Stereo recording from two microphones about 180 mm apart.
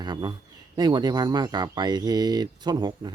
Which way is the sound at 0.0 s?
25° right (ahead or behind).